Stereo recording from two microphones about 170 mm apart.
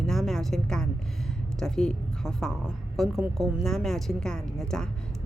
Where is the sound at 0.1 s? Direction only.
Centre (ahead or behind).